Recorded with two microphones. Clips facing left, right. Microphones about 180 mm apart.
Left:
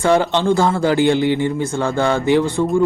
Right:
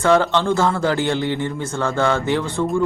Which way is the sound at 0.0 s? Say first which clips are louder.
Left 1 dB; 15° left (ahead or behind).